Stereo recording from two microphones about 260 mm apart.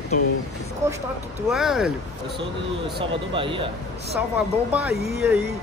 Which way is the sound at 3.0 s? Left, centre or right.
Centre.